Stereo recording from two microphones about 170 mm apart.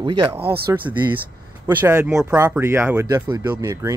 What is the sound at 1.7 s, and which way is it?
Speech, 15° right (ahead or behind).